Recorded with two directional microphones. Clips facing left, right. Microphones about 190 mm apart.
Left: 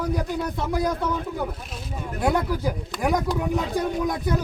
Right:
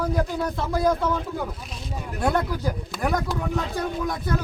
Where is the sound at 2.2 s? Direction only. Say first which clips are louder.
Left 1 dB; 10° left (ahead or behind).